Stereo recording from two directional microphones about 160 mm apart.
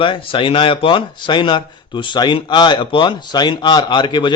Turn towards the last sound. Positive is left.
turn(degrees=30)  # may be behind; listen again after turning